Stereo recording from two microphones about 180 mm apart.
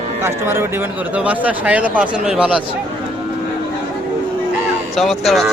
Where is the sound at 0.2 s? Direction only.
15° right (ahead or behind).